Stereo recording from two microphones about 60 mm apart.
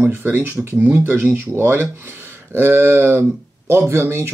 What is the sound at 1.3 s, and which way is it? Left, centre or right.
Speech, right.